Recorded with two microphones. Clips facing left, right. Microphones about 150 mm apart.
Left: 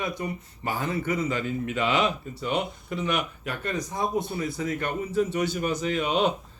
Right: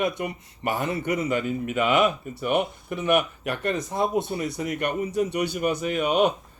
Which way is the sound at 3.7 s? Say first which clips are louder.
Right 3 dB; 25° right (ahead or behind).